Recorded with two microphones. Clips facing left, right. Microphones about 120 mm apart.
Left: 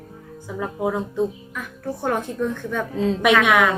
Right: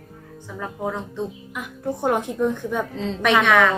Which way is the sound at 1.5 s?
15° right (ahead or behind).